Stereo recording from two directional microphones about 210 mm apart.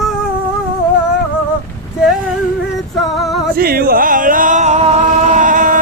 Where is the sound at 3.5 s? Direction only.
45° right (ahead or behind).